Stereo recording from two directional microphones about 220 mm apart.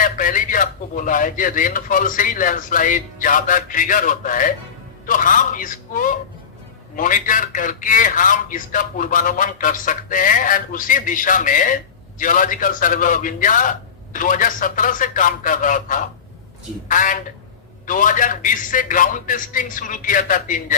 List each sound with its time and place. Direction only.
0.0 s a man's voice: 35° left (ahead or behind)